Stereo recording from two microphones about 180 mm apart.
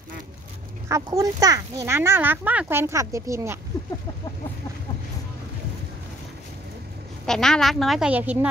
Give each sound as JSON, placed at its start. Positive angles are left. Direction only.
{"t": 0.8, "sound": "speech", "side_deg": -15}
{"t": 7.2, "sound": "speech", "side_deg": 5}